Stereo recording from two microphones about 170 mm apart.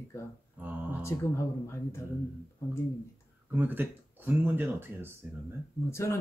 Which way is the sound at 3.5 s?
10° right (ahead or behind).